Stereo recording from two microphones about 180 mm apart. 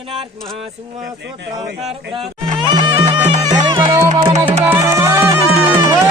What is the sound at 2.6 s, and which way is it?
Music, 25° right (ahead or behind).